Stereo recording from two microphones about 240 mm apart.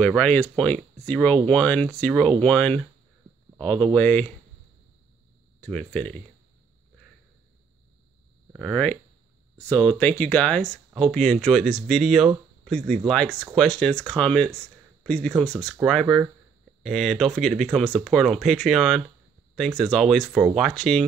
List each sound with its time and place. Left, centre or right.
0.0 s speech: centre
5.6 s speech: centre
8.5 s speech: centre